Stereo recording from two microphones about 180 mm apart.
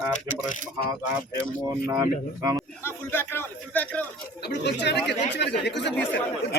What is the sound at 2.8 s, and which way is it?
Speech, 10° left (ahead or behind).